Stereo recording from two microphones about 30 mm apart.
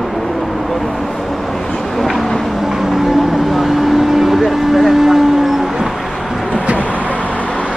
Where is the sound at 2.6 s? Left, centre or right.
Centre.